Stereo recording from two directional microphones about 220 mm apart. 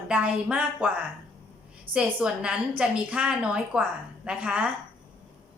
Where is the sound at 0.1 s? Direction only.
5° right (ahead or behind).